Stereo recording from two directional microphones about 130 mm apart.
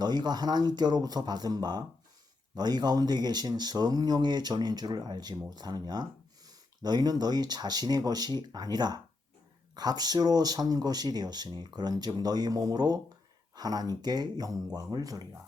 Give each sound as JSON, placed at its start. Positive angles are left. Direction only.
{"t": 0.0, "sound": "speech", "side_deg": -35}